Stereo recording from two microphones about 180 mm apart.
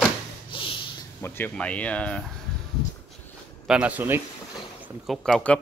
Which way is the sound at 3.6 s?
5° right (ahead or behind).